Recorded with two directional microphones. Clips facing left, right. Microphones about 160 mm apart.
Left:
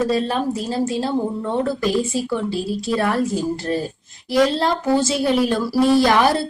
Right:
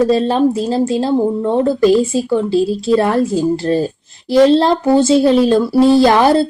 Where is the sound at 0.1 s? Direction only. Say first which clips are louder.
Right 7 dB; 30° right (ahead or behind).